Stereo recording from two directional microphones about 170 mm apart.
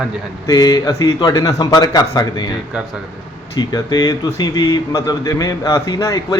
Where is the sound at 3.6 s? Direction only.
20° left (ahead or behind).